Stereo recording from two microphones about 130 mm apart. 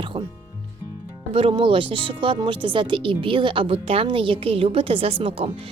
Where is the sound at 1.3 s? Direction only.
40° right (ahead or behind).